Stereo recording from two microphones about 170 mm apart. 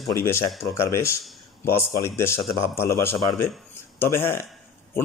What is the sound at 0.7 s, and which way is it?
A man's voice, 15° left (ahead or behind).